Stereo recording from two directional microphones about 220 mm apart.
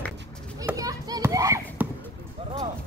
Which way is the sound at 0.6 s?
15° right (ahead or behind).